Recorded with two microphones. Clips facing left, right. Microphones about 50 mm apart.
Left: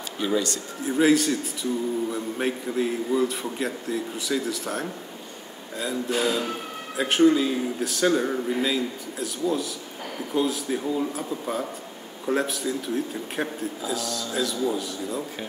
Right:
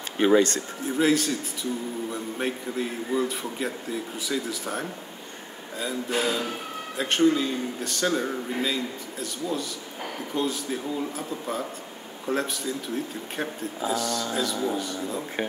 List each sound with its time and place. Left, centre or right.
0.2 s speech: right
0.8 s speech: centre
6.2 s speech: centre